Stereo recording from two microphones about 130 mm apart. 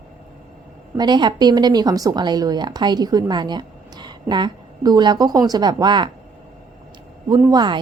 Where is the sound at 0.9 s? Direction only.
35° right (ahead or behind).